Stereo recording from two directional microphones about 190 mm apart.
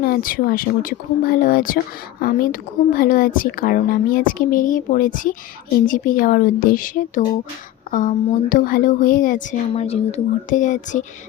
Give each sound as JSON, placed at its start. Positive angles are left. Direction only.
{"t": 0.0, "sound": "a woman's voice", "side_deg": 50}